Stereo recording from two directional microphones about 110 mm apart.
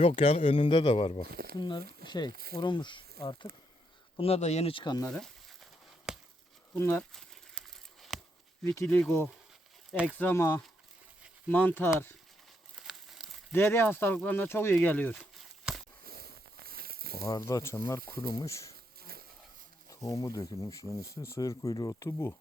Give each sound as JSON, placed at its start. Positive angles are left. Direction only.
{"t": 0.0, "sound": "speech", "side_deg": 75}
{"t": 0.6, "sound": "a man's voice", "side_deg": 50}
{"t": 1.5, "sound": "speech", "side_deg": 40}
{"t": 4.2, "sound": "speech", "side_deg": 75}
{"t": 4.7, "sound": "speech", "side_deg": 45}
{"t": 5.1, "sound": "a sound", "side_deg": 0}
{"t": 6.1, "sound": "chop", "side_deg": -5}
{"t": 6.7, "sound": "speech", "side_deg": 20}
{"t": 7.1, "sound": "a sound", "side_deg": 5}
{"t": 8.6, "sound": "speech", "side_deg": 25}
{"t": 12.7, "sound": "crumpling", "side_deg": 0}
{"t": 13.5, "sound": "speech", "side_deg": 20}
{"t": 17.2, "sound": "speech", "side_deg": 30}
{"t": 19.9, "sound": "speech", "side_deg": 30}